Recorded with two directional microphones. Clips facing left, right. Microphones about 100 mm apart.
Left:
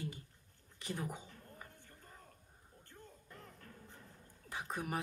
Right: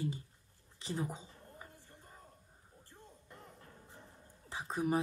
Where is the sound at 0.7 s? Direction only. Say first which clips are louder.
Right 3 dB; 20° right (ahead or behind).